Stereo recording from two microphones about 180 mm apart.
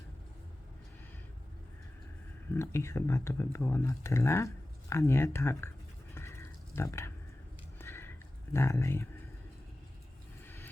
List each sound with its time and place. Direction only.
2.5 s speech: 15° left (ahead or behind)
6.1 s a sound: 15° left (ahead or behind)
8.5 s speech: 15° left (ahead or behind)
10.4 s vehicle: 10° left (ahead or behind)